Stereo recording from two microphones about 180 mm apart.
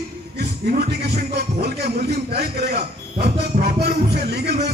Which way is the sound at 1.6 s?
60° right (ahead or behind).